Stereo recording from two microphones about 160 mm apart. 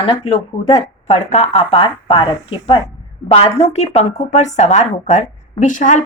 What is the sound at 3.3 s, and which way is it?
A woman's voice, 40° left (ahead or behind).